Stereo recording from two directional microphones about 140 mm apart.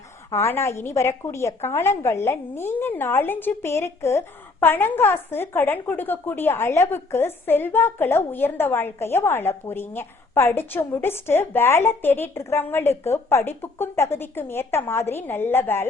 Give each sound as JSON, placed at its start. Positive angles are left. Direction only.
{"t": 0.3, "sound": "a woman's voice", "side_deg": 20}